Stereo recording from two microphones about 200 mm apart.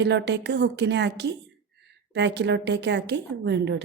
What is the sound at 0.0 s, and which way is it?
A woman's voice, 60° right (ahead or behind).